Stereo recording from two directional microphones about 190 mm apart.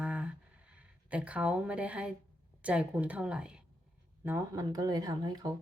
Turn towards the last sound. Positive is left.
turn(degrees=-20)  # may be behind; listen again after turning